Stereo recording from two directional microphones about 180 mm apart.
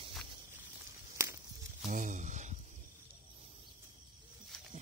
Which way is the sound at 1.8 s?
45° right (ahead or behind).